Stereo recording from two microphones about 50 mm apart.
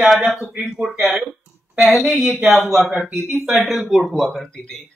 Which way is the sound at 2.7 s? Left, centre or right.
Centre.